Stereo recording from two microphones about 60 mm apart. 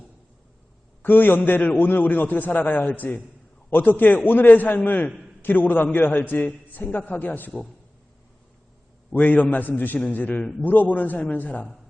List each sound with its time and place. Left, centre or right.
1.0 s a man's voice: left
9.1 s a man's voice: left